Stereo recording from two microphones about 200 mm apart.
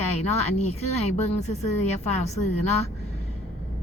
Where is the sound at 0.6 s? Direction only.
30° left (ahead or behind).